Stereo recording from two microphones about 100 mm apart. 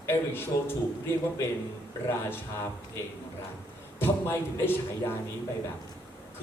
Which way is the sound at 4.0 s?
20° left (ahead or behind).